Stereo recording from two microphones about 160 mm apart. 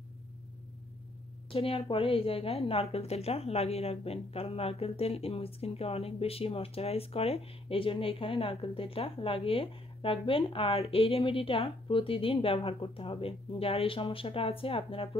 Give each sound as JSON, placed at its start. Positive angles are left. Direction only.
{"t": 1.5, "sound": "a woman's voice", "side_deg": 35}